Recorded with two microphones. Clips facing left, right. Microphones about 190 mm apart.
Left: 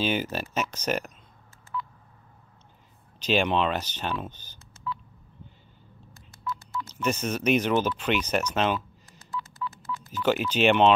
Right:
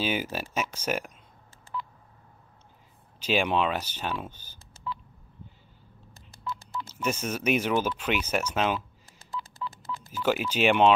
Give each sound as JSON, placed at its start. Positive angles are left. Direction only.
{"t": 0.0, "sound": "speech", "side_deg": -10}
{"t": 1.7, "sound": "telephone dialing", "side_deg": -25}
{"t": 3.2, "sound": "speech", "side_deg": -10}
{"t": 6.9, "sound": "speech", "side_deg": -10}
{"t": 9.6, "sound": "telephone dialing", "side_deg": -30}
{"t": 10.1, "sound": "speech", "side_deg": -10}